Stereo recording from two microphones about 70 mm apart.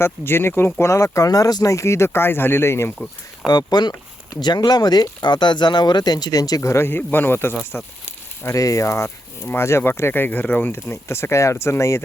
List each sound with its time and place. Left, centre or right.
0.0 s speech: left
0.9 s speech: left
1.7 s speech: left
2.0 s speech: left
3.5 s speech: left
6.6 s speech: left
8.4 s speech: left
9.0 s speech: left